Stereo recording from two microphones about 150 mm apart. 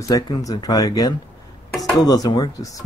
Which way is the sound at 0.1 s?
25° left (ahead or behind).